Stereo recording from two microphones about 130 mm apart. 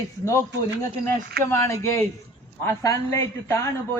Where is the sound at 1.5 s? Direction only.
20° left (ahead or behind).